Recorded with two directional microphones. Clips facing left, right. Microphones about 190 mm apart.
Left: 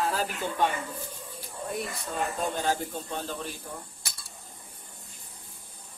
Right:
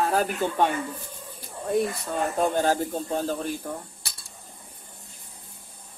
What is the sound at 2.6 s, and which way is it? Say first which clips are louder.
Speech: right 6 dB; 45° right (ahead or behind).